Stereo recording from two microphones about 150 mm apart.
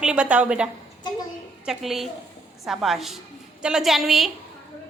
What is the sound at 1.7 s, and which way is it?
A woman's voice, centre (ahead or behind).